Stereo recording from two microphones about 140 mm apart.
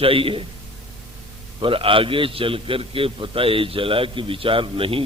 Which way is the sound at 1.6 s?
40° right (ahead or behind).